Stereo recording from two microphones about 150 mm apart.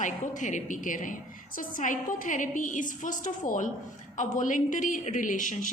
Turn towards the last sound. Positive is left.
turn(degrees=60)  # may be behind; listen again after turning